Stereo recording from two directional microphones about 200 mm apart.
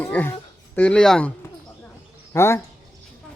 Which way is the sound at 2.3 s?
15° left (ahead or behind).